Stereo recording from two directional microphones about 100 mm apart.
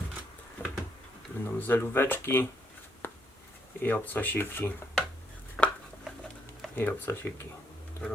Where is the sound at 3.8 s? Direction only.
20° left (ahead or behind).